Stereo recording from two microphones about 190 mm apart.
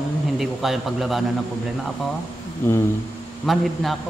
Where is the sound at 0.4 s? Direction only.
Centre (ahead or behind).